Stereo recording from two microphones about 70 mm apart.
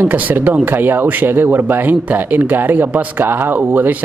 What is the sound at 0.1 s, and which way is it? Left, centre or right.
Speech, right.